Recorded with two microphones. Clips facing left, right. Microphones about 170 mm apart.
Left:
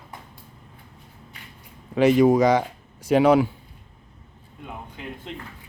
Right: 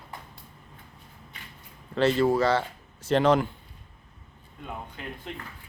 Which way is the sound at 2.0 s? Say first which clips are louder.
Left 6 dB; 15° left (ahead or behind).